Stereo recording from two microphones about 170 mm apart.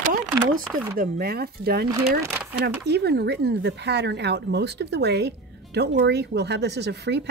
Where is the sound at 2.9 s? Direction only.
75° right (ahead or behind).